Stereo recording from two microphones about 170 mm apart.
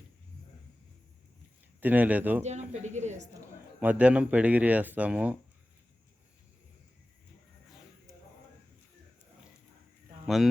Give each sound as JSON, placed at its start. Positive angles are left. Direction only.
{"t": 1.8, "sound": "speech", "side_deg": -10}
{"t": 2.4, "sound": "speech", "side_deg": -45}
{"t": 3.8, "sound": "speech", "side_deg": -10}
{"t": 10.2, "sound": "speech", "side_deg": 0}